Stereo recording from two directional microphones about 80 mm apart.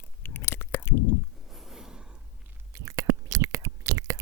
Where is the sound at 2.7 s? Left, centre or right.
Right.